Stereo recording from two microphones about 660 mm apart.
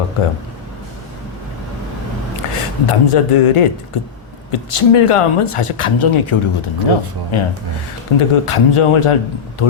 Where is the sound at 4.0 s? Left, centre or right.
Left.